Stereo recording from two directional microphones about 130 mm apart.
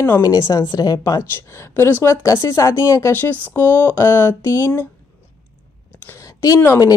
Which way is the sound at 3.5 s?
15° left (ahead or behind).